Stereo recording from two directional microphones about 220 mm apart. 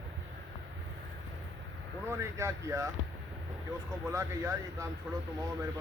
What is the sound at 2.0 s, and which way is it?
Speech, 10° right (ahead or behind).